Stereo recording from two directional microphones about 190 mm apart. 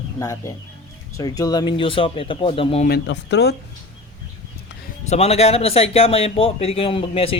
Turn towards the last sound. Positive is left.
turn(degrees=30)  # may be behind; listen again after turning